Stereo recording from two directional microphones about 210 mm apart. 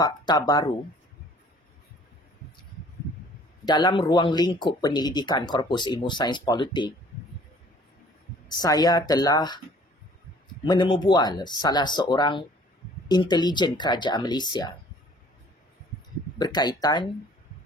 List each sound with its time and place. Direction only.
0.0 s speech: 20° left (ahead or behind)
3.6 s speech: 20° left (ahead or behind)
8.5 s speech: 20° left (ahead or behind)
10.6 s speech: 20° left (ahead or behind)
16.3 s speech: 20° left (ahead or behind)